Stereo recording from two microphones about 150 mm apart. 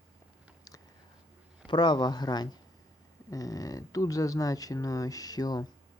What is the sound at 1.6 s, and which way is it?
Speech, 30° left (ahead or behind).